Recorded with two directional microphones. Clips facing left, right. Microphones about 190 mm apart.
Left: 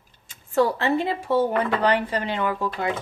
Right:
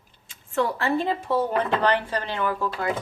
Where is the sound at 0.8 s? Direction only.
10° left (ahead or behind).